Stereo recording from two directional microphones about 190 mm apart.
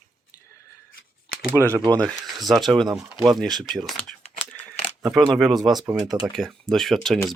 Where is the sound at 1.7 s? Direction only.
20° right (ahead or behind).